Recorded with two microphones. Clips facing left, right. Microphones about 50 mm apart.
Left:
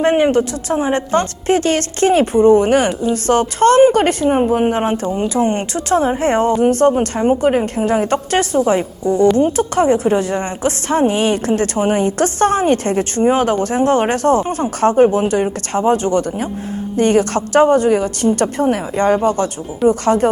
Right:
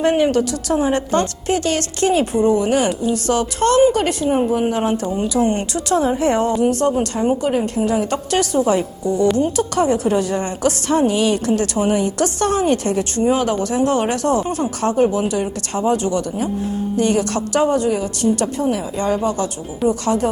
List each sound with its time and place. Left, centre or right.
0.0 s a woman's voice: left